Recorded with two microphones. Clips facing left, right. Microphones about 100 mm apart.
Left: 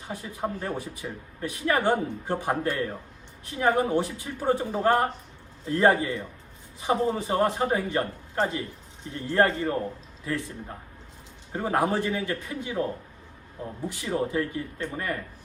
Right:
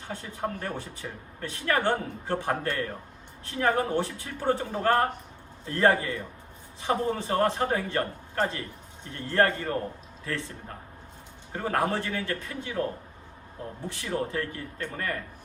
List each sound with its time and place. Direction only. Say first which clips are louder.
0.1 s speech: left 1 dB; 15° left (ahead or behind)
11.5 s speech: left 2 dB; 15° left (ahead or behind)